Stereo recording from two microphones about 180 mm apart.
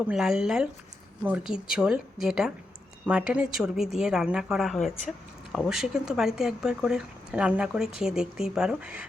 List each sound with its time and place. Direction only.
0.0 s speech: 5° right (ahead or behind)